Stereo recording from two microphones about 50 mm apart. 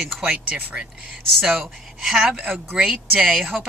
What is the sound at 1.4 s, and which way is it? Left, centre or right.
Speech, centre.